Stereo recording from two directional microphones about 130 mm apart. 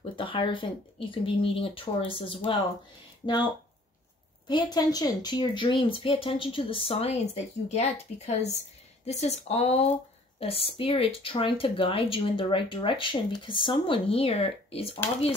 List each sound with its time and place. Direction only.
0.1 s speech: 40° left (ahead or behind)
4.5 s speech: 35° left (ahead or behind)